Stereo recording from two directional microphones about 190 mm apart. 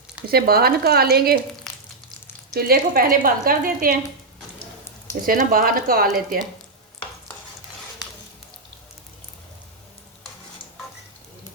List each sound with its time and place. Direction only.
0.3 s a woman's voice: 55° right (ahead or behind)
2.5 s a woman's voice: 50° right (ahead or behind)
5.2 s a woman's voice: 50° right (ahead or behind)